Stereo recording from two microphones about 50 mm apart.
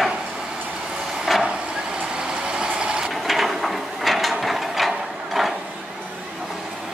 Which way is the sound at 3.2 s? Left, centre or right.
Centre.